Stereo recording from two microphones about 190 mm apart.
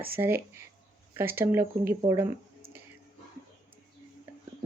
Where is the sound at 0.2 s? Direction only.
10° right (ahead or behind).